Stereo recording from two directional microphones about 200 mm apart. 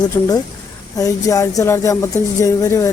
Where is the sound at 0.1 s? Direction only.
10° left (ahead or behind).